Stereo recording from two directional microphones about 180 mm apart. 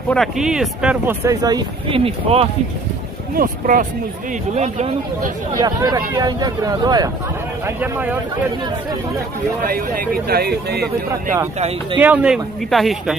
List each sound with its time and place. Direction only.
0.1 s speech: centre (ahead or behind); by 2.4 s 30° right (ahead or behind)
3.3 s speech: 50° right (ahead or behind)
5.6 s speech: 20° right (ahead or behind)
7.6 s speech: 10° right (ahead or behind)
10.2 s speech: 60° right (ahead or behind)
12.0 s speech: 10° right (ahead or behind)